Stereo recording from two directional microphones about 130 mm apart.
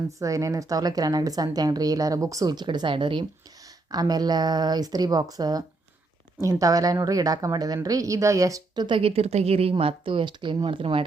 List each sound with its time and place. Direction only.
0.2 s a woman's voice: 25° right (ahead or behind)
9.0 s speech: 50° right (ahead or behind)